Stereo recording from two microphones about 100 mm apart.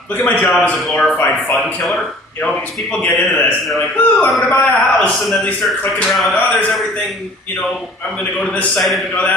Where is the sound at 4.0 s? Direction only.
15° left (ahead or behind).